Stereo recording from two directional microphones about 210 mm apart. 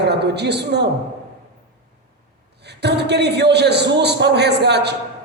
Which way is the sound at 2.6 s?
50° right (ahead or behind).